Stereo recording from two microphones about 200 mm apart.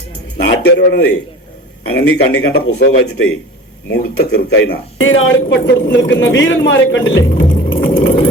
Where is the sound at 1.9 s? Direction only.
55° left (ahead or behind).